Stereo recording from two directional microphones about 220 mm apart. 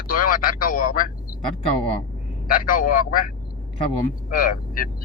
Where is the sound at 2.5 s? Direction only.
40° left (ahead or behind).